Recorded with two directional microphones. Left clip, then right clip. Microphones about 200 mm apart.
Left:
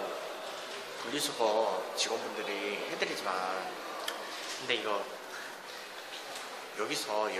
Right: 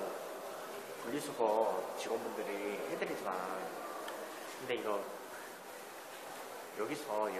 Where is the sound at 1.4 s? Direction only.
15° left (ahead or behind).